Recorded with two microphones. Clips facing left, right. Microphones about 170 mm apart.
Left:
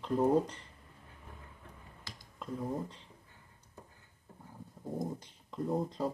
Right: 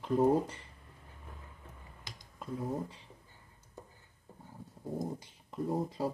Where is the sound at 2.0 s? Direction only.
15° right (ahead or behind).